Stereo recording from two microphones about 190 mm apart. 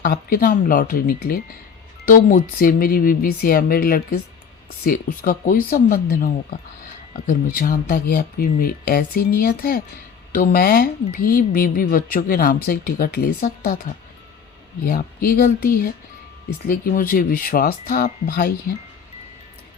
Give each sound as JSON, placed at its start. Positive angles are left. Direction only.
{"t": 0.0, "sound": "speech", "side_deg": 50}